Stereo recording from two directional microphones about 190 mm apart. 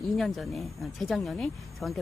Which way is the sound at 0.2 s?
Centre (ahead or behind).